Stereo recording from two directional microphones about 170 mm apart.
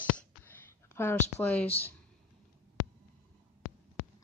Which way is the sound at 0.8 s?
15° left (ahead or behind).